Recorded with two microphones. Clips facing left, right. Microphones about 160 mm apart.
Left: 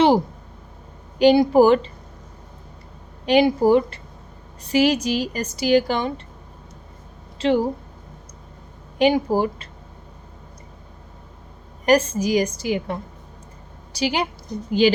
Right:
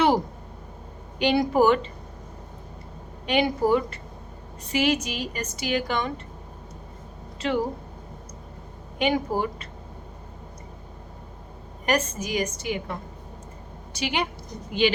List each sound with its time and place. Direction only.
1.2 s a woman's voice: 35° left (ahead or behind)
3.2 s a woman's voice: 35° left (ahead or behind)
7.3 s speech: 30° left (ahead or behind)
9.0 s a woman's voice: 30° left (ahead or behind)
11.9 s a woman's voice: 30° left (ahead or behind)